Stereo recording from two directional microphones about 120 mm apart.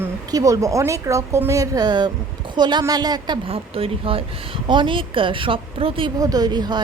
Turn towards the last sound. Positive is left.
turn(degrees=-35)  # may be behind; listen again after turning